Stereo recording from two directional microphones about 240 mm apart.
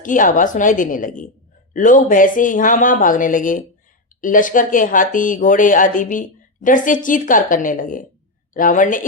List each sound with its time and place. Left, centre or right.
0.0 s speech: left